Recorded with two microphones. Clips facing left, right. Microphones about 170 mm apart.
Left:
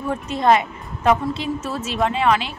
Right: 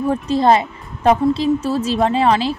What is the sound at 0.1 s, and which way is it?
Speech, 35° right (ahead or behind).